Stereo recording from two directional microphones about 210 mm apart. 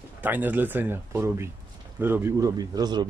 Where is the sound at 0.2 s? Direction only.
10° right (ahead or behind).